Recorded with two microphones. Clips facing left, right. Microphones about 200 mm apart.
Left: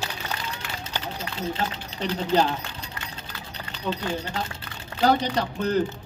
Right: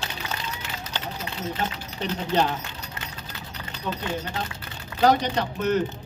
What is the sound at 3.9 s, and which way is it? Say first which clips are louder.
Speech: left 1 dB; 25° left (ahead or behind).